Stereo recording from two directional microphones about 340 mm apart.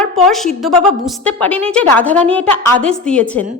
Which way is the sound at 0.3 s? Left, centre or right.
Centre.